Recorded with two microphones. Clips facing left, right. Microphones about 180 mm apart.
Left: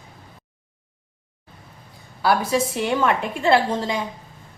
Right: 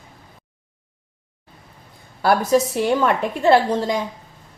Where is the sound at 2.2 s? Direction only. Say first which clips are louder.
Right 3 dB; 45° right (ahead or behind).